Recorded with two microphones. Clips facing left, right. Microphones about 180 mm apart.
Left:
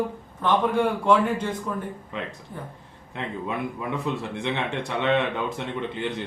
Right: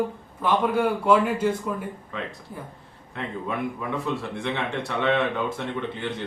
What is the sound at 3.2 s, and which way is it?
Speech, 20° left (ahead or behind).